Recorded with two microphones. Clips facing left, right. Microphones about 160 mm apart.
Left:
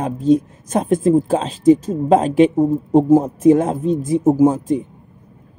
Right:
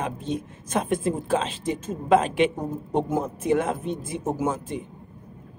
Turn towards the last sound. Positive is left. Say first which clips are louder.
# left 12 dB
turn(degrees=40)  # may be behind; listen again after turning